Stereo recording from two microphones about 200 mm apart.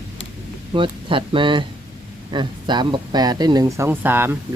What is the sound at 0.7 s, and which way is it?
Speech, 25° right (ahead or behind).